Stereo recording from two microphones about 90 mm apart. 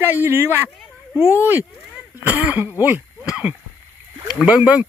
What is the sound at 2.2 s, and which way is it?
Speech, 15° right (ahead or behind).